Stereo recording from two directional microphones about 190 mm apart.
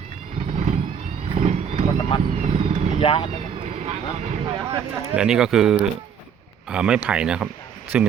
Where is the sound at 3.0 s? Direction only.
30° left (ahead or behind).